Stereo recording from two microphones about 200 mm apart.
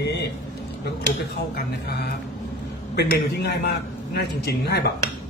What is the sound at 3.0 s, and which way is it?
Speech, 55° left (ahead or behind).